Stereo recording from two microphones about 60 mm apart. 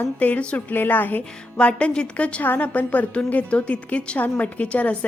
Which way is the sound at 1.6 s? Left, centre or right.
Centre.